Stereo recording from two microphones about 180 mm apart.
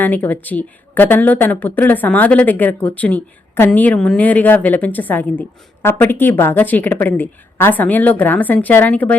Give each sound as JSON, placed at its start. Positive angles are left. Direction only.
{"t": 0.0, "sound": "speech", "side_deg": 10}